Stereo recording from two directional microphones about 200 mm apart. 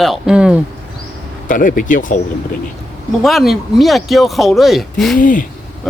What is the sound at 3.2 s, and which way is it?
Speech, centre (ahead or behind).